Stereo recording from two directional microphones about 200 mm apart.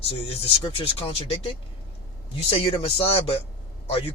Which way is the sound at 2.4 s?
30° left (ahead or behind).